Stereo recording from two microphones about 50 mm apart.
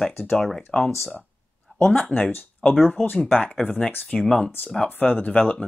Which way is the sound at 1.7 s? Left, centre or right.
Left.